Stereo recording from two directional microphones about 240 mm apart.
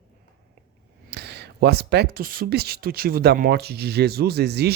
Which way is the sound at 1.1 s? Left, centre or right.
Right.